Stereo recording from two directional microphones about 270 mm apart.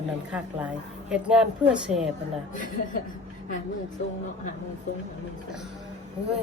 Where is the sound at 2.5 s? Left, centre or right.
Left.